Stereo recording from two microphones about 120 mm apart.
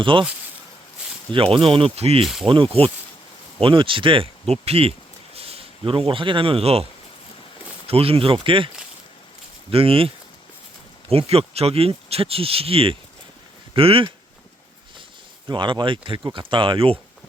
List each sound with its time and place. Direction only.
0.0 s speech: 45° right (ahead or behind)
1.3 s speech: 45° right (ahead or behind)
2.2 s speech: centre (ahead or behind)
2.5 s speech: 50° right (ahead or behind)
7.9 s speech: 55° right (ahead or behind)
11.1 s speech: 55° right (ahead or behind)
15.4 s speech: 40° right (ahead or behind)